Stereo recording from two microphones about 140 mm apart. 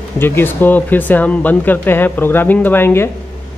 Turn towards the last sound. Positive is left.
turn(degrees=15)  # may be behind; listen again after turning